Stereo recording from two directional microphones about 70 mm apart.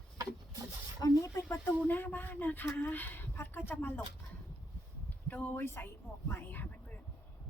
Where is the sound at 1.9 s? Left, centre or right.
Left.